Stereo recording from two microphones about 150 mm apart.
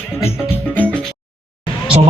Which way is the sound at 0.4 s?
15° left (ahead or behind).